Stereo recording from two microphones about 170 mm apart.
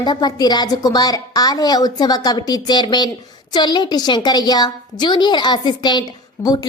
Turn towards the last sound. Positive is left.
turn(degrees=20)  # may be behind; listen again after turning